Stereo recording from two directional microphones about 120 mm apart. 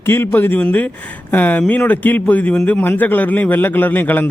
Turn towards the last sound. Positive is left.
turn(degrees=15)  # may be behind; listen again after turning